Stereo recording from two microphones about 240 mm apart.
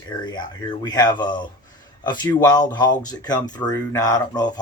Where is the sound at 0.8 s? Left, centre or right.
Centre.